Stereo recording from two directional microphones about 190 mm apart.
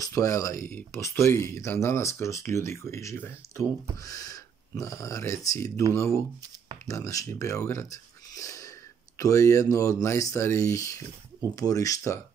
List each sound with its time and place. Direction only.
0.0 s speech: 15° left (ahead or behind)